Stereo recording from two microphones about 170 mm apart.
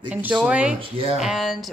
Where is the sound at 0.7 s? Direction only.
35° right (ahead or behind).